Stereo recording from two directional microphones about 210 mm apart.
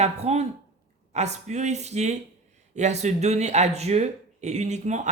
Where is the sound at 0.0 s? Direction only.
30° right (ahead or behind).